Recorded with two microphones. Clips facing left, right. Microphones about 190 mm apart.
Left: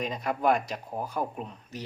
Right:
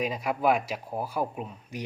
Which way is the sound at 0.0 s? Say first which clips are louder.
Right 1 dB; 10° right (ahead or behind).